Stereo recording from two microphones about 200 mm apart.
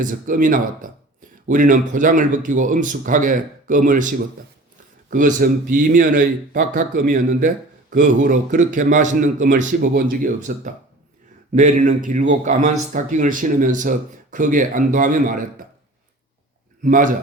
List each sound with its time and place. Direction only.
0.0 s a man's voice: 40° right (ahead or behind)
16.8 s a man's voice: 40° right (ahead or behind)